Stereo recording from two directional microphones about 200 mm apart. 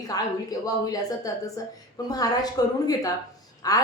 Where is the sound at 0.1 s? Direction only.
20° left (ahead or behind).